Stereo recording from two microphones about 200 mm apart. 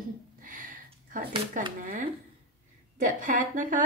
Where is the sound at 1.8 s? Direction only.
40° right (ahead or behind).